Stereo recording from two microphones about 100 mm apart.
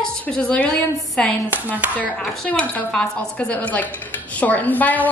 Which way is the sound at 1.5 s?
15° right (ahead or behind).